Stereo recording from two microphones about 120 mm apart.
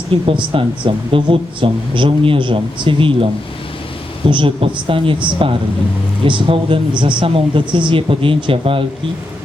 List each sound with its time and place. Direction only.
0.1 s speech: 50° right (ahead or behind)
4.3 s speech: 45° right (ahead or behind)